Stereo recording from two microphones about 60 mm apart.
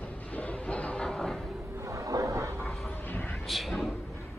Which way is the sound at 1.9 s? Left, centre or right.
Right.